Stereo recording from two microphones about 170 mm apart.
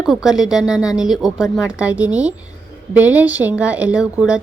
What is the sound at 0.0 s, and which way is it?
A woman's voice, 5° right (ahead or behind).